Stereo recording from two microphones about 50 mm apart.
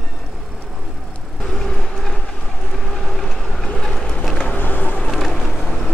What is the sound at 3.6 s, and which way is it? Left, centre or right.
Vehicle, centre.